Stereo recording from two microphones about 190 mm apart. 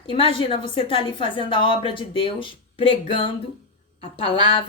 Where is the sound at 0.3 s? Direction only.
30° left (ahead or behind).